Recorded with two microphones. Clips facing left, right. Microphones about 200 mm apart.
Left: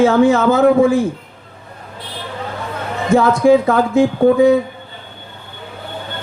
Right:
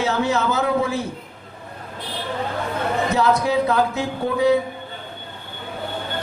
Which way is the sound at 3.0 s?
50° left (ahead or behind).